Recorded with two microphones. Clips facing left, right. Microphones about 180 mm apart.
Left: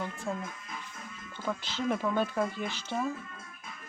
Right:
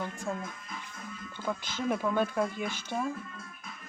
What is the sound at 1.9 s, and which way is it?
Speech, 10° right (ahead or behind).